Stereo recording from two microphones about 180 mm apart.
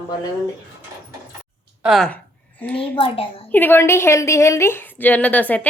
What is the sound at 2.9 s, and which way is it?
Speech, 30° left (ahead or behind).